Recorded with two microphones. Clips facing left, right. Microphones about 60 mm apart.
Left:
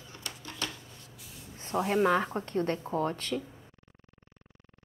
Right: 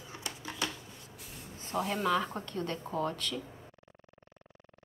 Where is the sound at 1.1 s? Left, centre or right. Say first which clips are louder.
Right 3 dB; right.